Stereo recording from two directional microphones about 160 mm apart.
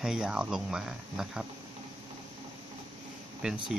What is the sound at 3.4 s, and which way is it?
Speech, 5° right (ahead or behind).